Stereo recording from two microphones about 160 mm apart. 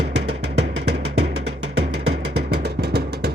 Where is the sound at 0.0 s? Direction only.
90° right.